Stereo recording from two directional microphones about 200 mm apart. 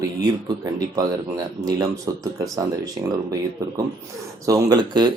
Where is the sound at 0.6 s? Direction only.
15° right (ahead or behind).